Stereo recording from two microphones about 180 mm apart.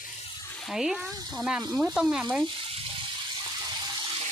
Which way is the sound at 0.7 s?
Centre (ahead or behind).